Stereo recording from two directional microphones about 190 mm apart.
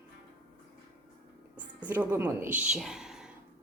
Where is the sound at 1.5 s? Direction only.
10° right (ahead or behind).